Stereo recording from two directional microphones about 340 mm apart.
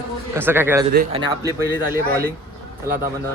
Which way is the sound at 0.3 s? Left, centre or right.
Centre.